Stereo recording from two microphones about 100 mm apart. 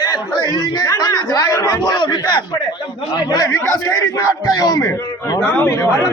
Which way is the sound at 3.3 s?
35° left (ahead or behind).